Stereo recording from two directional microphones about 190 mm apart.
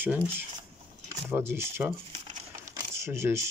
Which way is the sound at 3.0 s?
15° right (ahead or behind).